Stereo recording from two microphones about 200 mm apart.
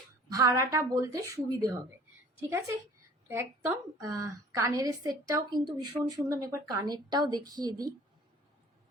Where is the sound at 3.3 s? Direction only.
15° right (ahead or behind).